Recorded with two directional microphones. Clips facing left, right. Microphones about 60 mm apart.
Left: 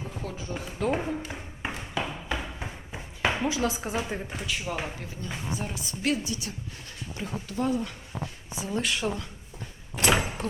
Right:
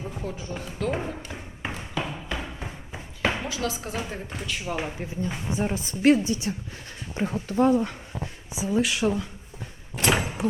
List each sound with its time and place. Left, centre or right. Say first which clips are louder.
0.2 s speech: left 1 dB; centre
0.8 s a sound: left 1 dB; centre
3.5 s speech: left 2 dB; left; by 4.9 s centre
5.5 s a woman's voice: right 6 dB; right
8.5 s speech: right 5 dB; centre
10.0 s door: even; centre